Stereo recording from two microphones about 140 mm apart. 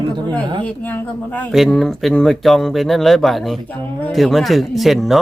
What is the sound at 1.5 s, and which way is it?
Speech, centre (ahead or behind).